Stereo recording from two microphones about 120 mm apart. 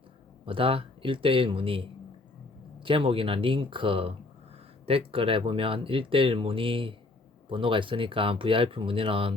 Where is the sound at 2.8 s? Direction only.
45° right (ahead or behind).